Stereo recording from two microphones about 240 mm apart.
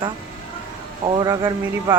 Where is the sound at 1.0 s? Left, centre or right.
Centre.